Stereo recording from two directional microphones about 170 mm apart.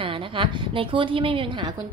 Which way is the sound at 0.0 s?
30° right (ahead or behind).